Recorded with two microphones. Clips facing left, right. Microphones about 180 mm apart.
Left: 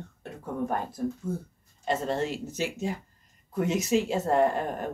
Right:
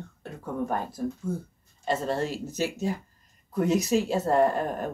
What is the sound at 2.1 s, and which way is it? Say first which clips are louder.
Speech: right 1 dB; 20° left (ahead or behind).